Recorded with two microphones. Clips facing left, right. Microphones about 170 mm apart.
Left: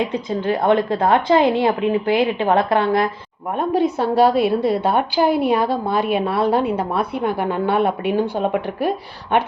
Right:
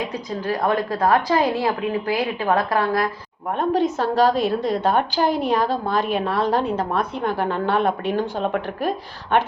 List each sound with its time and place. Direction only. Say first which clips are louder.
0.1 s a woman's voice: left 4 dB; 25° left (ahead or behind)
3.5 s a woman's voice: left 2 dB; 10° left (ahead or behind)